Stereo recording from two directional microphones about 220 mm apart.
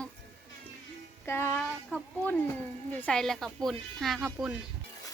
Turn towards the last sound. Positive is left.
turn(degrees=0)  # may be behind; listen again after turning